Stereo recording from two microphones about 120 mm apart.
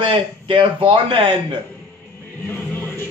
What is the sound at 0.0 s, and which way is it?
Speech, 45° right (ahead or behind).